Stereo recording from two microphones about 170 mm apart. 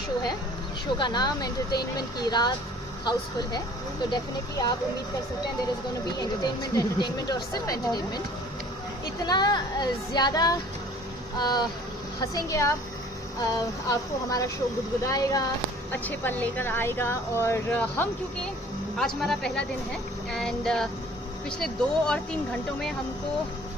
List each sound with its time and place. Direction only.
0.9 s speech: 25° left (ahead or behind)
6.1 s speech: 25° left (ahead or behind)
9.2 s speech: 25° left (ahead or behind); by 22.9 s 5° left (ahead or behind)